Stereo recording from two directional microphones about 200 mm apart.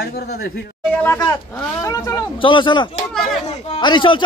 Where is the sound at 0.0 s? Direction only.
50° left (ahead or behind).